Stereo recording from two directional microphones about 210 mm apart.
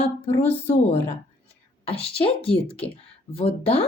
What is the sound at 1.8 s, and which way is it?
A woman's voice, 25° left (ahead or behind).